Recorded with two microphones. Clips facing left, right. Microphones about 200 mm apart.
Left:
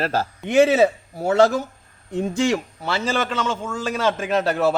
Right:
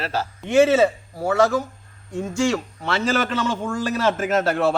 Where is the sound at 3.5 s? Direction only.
10° right (ahead or behind).